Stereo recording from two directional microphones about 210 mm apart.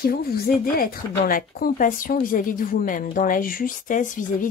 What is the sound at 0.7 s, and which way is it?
Speech, 45° left (ahead or behind).